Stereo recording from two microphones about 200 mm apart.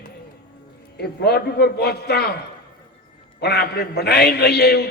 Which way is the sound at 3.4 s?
55° left (ahead or behind).